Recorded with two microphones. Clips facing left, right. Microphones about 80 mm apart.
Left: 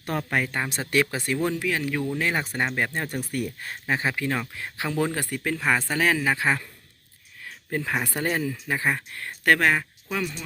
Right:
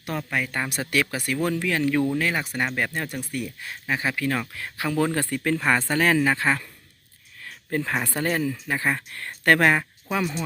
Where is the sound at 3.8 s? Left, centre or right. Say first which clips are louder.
Even; left.